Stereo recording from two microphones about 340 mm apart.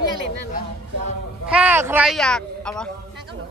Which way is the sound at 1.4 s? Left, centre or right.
Centre.